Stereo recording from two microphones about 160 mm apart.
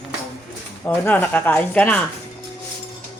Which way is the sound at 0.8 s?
10° left (ahead or behind).